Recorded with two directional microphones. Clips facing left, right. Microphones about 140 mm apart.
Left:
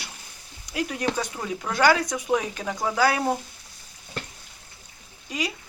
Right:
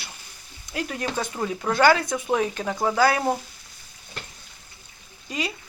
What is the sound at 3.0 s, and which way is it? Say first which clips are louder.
Speech: right 1 dB; 10° left (ahead or behind).